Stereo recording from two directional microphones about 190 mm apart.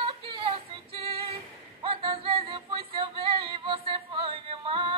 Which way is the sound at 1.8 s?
30° right (ahead or behind).